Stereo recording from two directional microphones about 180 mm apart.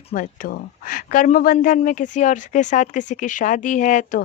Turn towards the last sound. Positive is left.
turn(degrees=45)  # may be behind; listen again after turning